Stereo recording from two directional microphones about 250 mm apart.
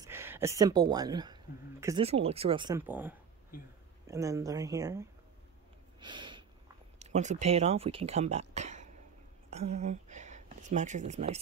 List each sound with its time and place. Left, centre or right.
0.0 s speech: centre
2.8 s speech: centre
5.9 s snort: centre
7.0 s speech: right